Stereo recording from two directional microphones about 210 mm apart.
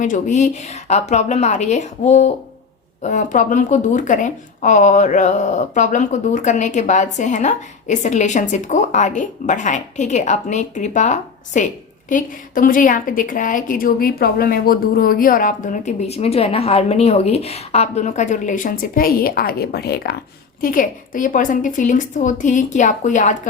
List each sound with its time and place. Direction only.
0.0 s speech: 35° left (ahead or behind)